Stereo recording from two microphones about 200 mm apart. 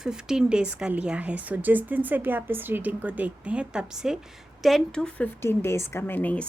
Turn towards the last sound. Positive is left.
turn(degrees=10)  # may be behind; listen again after turning